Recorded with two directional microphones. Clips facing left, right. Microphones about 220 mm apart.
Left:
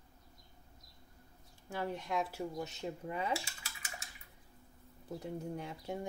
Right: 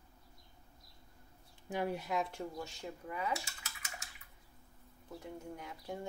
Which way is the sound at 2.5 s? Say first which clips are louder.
Left 4 dB; 20° left (ahead or behind).